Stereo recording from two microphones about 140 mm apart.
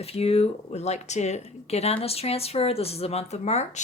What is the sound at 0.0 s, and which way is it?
Speech, 45° left (ahead or behind).